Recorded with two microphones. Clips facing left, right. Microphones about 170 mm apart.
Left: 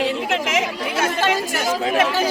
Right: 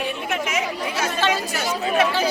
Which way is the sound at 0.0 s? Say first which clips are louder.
Left 4 dB; 90° left.